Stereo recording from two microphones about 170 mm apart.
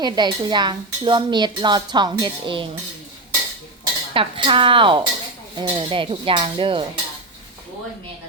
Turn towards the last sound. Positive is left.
turn(degrees=-30)  # may be behind; listen again after turning